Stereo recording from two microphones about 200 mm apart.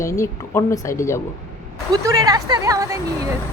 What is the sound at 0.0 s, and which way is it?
A woman's voice, 15° left (ahead or behind).